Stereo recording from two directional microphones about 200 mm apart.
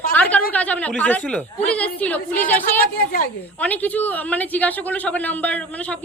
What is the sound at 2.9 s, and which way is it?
Speech, 45° left (ahead or behind).